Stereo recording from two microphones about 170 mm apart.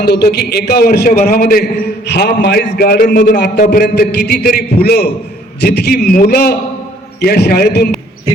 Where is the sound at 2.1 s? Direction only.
75° left (ahead or behind).